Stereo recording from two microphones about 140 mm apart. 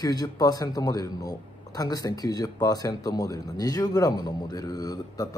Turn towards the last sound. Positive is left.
turn(degrees=25)  # may be behind; listen again after turning